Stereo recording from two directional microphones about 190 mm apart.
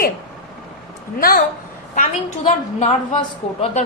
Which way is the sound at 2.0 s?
40° left (ahead or behind).